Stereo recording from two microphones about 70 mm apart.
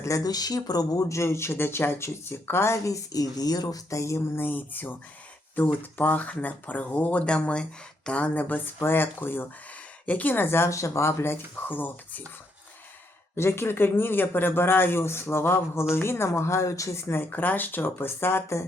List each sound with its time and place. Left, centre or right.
0.0 s speech: left
4.4 s speech: left
10.7 s speech: left
11.5 s speech: left
13.3 s speech: left